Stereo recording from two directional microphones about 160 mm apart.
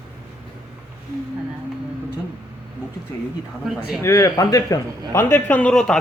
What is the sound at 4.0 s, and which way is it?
Speech, 20° left (ahead or behind).